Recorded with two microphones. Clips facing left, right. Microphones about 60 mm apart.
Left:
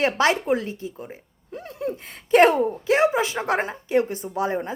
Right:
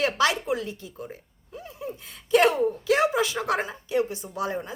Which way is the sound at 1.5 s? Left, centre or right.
Left.